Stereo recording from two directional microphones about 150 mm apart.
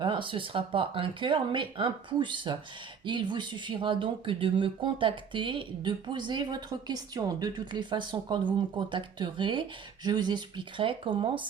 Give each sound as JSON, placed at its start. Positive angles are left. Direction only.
{"t": 0.0, "sound": "speech", "side_deg": -35}